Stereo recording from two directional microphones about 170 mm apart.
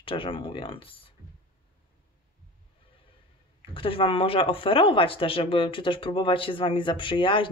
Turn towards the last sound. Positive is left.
turn(degrees=30)  # may be behind; listen again after turning